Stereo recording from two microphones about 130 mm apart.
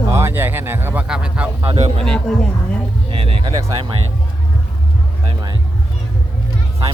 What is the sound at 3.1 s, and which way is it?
Speech, 45° right (ahead or behind).